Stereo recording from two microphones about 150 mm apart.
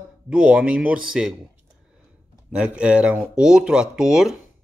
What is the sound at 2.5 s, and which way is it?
Speech, 5° right (ahead or behind).